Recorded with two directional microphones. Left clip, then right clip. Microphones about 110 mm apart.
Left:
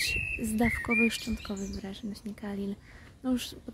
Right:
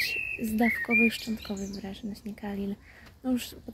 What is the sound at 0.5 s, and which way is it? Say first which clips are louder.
Speech: right 3 dB; 35° left (ahead or behind).